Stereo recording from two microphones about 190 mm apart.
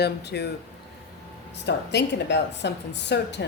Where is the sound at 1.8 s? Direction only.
65° left (ahead or behind).